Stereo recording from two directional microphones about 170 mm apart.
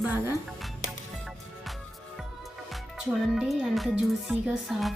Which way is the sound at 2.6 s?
Centre (ahead or behind).